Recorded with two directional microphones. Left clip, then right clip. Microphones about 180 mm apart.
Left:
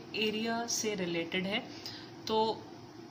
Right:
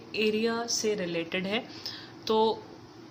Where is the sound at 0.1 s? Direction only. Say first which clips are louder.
Right 6 dB; 15° right (ahead or behind).